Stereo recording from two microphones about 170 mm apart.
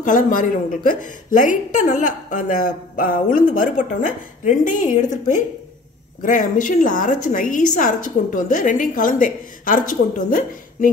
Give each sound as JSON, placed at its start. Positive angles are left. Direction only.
{"t": 0.0, "sound": "a woman's voice", "side_deg": 50}
{"t": 6.2, "sound": "a woman's voice", "side_deg": 50}